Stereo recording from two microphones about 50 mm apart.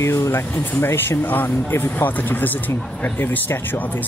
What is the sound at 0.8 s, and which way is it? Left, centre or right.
Speech, left.